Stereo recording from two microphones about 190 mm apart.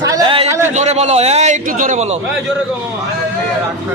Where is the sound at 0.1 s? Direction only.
25° right (ahead or behind).